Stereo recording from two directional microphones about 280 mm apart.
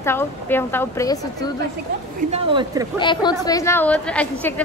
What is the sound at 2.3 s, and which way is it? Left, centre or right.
Speech, centre.